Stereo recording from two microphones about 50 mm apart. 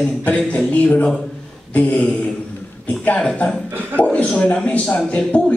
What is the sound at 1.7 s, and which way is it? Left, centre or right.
A man's voice, left.